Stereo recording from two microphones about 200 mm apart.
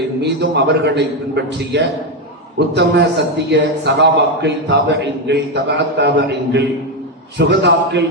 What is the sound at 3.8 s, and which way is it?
A man's voice, 60° right (ahead or behind).